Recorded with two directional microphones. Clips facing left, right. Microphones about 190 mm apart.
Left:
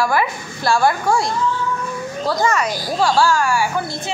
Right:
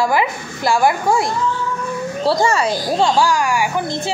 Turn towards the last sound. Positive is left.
turn(degrees=-15)  # may be behind; listen again after turning